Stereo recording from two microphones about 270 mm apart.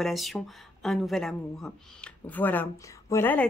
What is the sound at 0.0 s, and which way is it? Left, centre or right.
Speech, centre.